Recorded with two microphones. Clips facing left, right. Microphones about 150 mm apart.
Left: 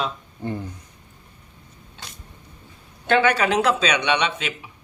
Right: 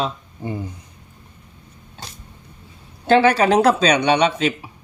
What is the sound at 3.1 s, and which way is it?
Speech, 35° right (ahead or behind).